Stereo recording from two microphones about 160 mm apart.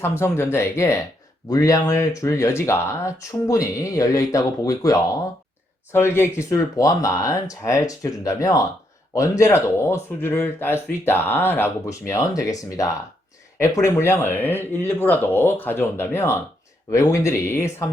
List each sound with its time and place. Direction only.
0.0 s speech: 15° left (ahead or behind)